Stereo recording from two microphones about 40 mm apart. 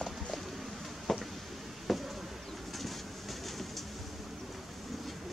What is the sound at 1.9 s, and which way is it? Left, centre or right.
Insect, centre.